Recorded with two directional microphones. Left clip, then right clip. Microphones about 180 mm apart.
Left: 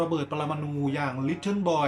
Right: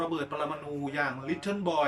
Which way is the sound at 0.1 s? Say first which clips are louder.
Left 3 dB; 15° left (ahead or behind).